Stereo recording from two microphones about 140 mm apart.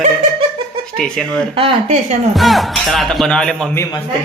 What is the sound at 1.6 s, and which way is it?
Speech, 45° right (ahead or behind).